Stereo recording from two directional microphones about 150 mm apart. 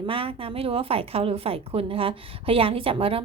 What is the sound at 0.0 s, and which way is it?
A woman's voice, 35° right (ahead or behind).